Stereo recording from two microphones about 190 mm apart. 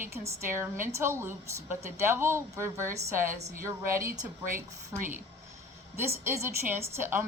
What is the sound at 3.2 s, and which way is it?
Speech, 45° right (ahead or behind).